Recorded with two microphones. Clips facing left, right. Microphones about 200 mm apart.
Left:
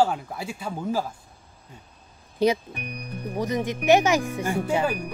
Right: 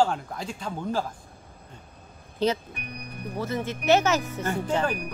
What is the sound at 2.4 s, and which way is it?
Speech, 10° left (ahead or behind).